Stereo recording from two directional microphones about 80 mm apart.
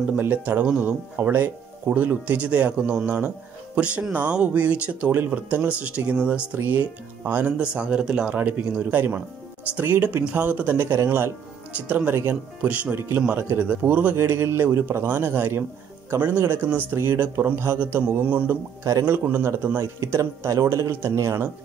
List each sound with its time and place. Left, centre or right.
0.2 s speech: right
8.4 s speech: right
11.7 s speech: centre
14.1 s a man's voice: right
19.8 s a man's voice: right